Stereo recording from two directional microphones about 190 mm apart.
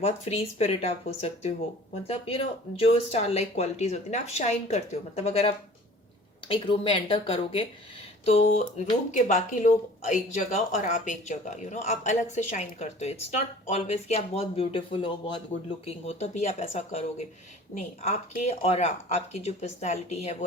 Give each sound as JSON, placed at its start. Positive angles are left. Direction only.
{"t": 0.0, "sound": "a woman's voice", "side_deg": 30}